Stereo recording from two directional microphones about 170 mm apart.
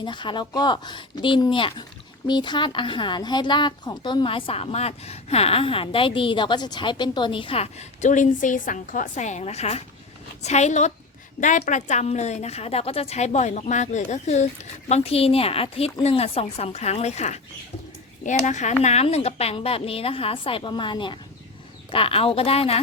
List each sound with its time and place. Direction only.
0.0 s a woman's voice: 25° left (ahead or behind)